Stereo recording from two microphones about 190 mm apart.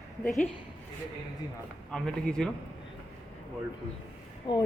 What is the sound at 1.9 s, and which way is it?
Speech, 5° left (ahead or behind).